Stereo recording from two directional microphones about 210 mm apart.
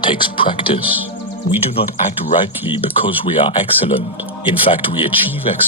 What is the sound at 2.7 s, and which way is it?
Speech, 25° left (ahead or behind).